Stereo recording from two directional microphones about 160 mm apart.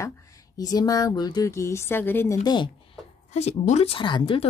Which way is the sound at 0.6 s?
25° left (ahead or behind).